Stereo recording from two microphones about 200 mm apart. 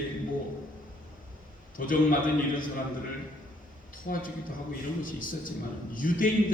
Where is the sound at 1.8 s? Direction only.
45° left (ahead or behind).